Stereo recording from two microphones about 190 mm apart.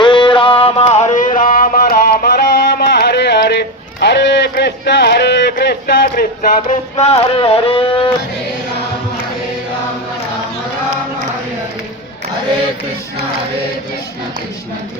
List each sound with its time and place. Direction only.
0.0 s music: 25° left (ahead or behind)
1.5 s a sound: 50° left (ahead or behind)
7.0 s speech: 30° left (ahead or behind)